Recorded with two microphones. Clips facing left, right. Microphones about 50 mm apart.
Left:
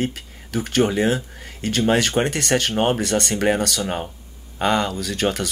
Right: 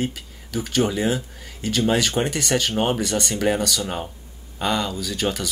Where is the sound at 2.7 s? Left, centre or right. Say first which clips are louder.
Left 2 dB; centre.